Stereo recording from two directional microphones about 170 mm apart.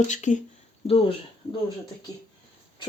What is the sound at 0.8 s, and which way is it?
Speech, 35° left (ahead or behind).